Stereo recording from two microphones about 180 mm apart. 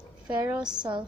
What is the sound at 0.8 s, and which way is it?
Speech, 25° right (ahead or behind).